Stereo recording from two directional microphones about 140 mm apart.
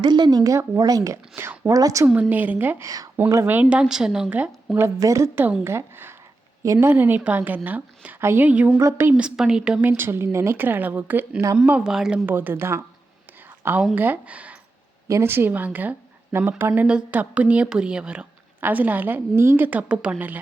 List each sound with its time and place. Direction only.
0.0 s speech: 30° right (ahead or behind)
2.0 s a woman's voice: 5° right (ahead or behind)
4.9 s a woman's voice: 20° right (ahead or behind); by 10.0 s 5° right (ahead or behind)
10.0 s a woman's voice: 15° right (ahead or behind)
13.9 s a woman's voice: 15° right (ahead or behind)